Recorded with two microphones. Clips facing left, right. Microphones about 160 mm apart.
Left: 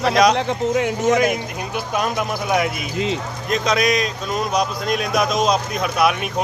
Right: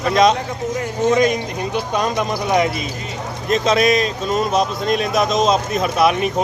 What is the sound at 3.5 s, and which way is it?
Speech, 30° right (ahead or behind).